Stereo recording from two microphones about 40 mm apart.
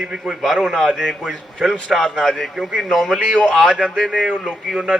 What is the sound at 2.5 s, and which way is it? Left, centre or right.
Speech, centre.